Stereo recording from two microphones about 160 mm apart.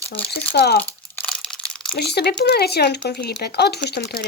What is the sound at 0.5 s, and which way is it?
Speech, 80° left.